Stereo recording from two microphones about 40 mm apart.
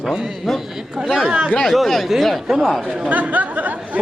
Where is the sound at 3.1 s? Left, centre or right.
Right.